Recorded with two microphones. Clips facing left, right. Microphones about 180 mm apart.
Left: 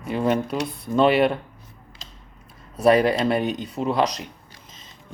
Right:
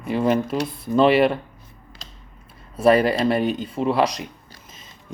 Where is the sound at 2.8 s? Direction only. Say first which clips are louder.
Right 1 dB; centre (ahead or behind).